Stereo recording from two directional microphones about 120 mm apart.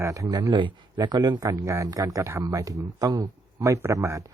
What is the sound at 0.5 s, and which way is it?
Speech, 40° right (ahead or behind).